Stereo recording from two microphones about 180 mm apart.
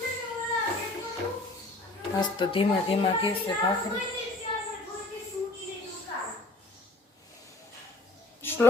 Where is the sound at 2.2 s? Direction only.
30° left (ahead or behind).